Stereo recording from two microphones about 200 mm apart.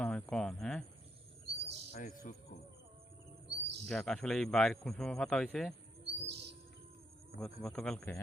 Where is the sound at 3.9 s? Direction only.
Centre (ahead or behind).